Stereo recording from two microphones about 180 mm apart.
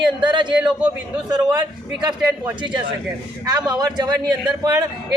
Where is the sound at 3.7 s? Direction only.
25° right (ahead or behind).